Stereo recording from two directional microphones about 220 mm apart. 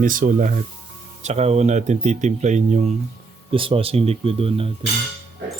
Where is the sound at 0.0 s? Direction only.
40° right (ahead or behind).